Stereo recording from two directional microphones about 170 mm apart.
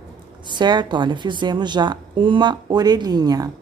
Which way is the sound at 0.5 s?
25° right (ahead or behind).